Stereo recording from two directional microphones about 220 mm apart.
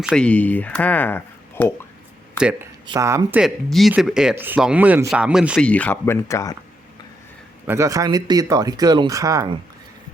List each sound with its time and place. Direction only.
0.0 s speech: 5° left (ahead or behind)
2.8 s speech: 15° right (ahead or behind)
3.4 s speech: centre (ahead or behind)
7.7 s speech: 15° right (ahead or behind)